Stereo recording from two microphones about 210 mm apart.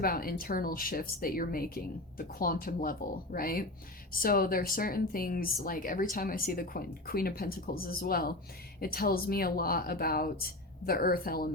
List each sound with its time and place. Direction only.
0.0 s speech: 45° left (ahead or behind)